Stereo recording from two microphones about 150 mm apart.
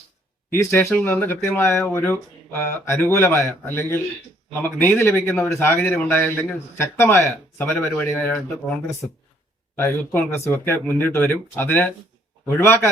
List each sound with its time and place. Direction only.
0.5 s speech: 15° left (ahead or behind)
9.7 s speech: 15° left (ahead or behind)